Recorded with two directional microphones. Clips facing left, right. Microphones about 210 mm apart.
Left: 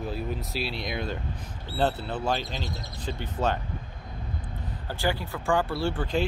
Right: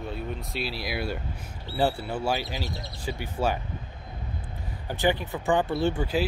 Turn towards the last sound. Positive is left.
turn(degrees=-10)  # may be behind; listen again after turning